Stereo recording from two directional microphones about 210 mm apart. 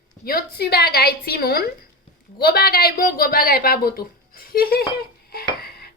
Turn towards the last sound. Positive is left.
turn(degrees=50)  # may be behind; listen again after turning